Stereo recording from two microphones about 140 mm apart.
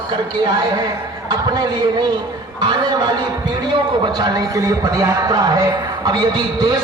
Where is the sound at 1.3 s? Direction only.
30° right (ahead or behind).